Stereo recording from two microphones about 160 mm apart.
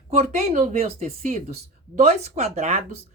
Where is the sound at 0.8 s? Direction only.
40° right (ahead or behind).